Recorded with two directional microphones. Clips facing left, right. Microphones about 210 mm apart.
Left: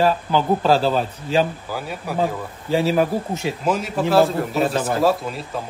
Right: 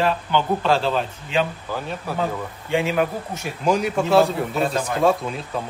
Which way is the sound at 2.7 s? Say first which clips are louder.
Left 3 dB; 35° left (ahead or behind).